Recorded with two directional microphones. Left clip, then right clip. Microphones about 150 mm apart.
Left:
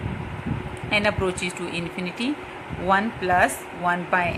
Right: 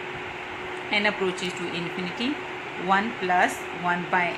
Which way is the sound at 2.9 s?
35° left (ahead or behind).